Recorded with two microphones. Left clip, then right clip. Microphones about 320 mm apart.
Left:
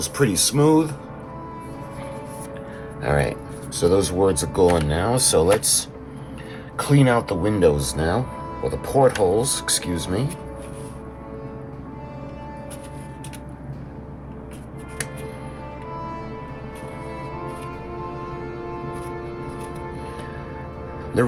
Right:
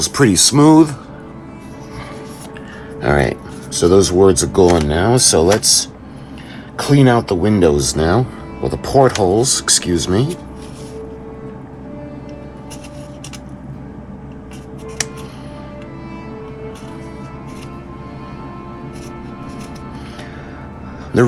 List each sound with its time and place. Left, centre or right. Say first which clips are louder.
0.0 s speech: right 8 dB; right
3.0 s speech: right 7 dB; right